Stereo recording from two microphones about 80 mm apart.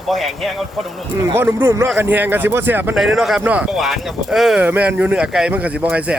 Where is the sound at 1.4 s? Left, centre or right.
Right.